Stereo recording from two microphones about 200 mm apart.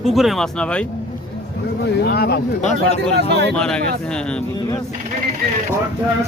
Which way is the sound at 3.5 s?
5° left (ahead or behind).